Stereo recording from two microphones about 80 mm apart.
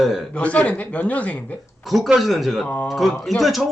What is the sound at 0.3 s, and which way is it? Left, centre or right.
Speech, centre.